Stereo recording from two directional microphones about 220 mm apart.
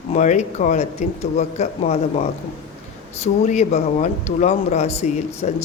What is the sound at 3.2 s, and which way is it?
Speech, 30° left (ahead or behind).